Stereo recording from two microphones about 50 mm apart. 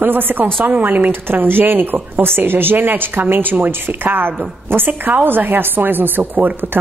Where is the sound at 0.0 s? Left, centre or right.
Right.